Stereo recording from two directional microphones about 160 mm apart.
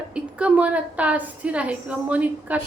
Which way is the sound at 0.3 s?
10° right (ahead or behind).